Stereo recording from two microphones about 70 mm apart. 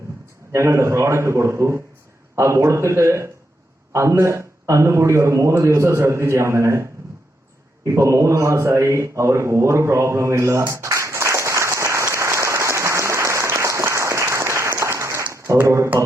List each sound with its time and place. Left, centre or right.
0.5 s a man's voice: right
7.9 s speech: right
10.7 s applause: right
15.3 s a sound: right
15.6 s speech: right